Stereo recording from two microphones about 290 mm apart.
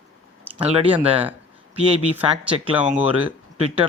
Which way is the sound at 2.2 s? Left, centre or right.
Centre.